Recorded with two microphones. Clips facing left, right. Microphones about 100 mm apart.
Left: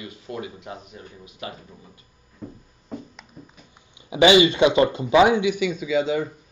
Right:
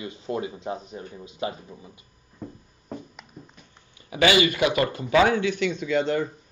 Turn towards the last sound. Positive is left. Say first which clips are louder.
# left 1 dB
turn(degrees=5)  # may be behind; listen again after turning